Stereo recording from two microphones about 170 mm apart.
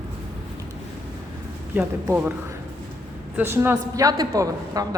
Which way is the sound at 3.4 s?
15° right (ahead or behind).